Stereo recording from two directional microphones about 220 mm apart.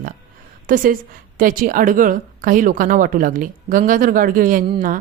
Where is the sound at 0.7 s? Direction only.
40° right (ahead or behind).